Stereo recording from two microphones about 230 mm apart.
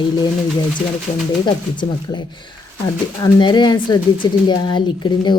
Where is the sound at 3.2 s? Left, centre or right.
Centre.